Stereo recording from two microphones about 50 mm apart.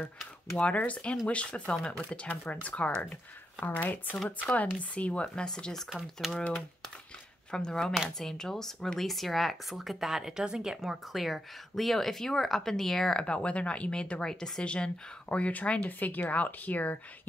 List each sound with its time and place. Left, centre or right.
0.6 s speech: left
3.6 s speech: left
5.2 s speech: centre
6.2 s speech: centre
7.5 s speech: centre
13.2 s speech: left